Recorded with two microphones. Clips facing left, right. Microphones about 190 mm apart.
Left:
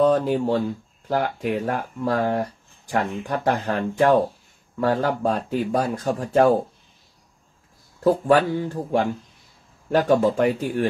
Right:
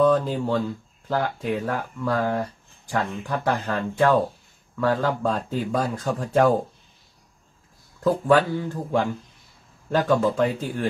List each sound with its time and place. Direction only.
0.0 s speech: 15° left (ahead or behind)
8.0 s a man's voice: 15° left (ahead or behind)